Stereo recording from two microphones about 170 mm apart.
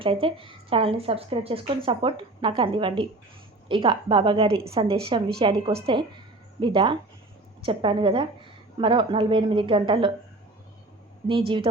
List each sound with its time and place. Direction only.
0.0 s a woman's voice: 30° right (ahead or behind)
11.3 s a woman's voice: 30° right (ahead or behind)